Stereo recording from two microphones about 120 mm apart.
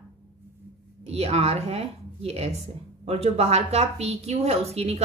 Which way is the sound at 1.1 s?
60° right (ahead or behind).